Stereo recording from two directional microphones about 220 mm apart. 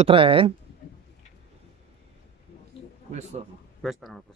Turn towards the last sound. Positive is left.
turn(degrees=0)  # may be behind; listen again after turning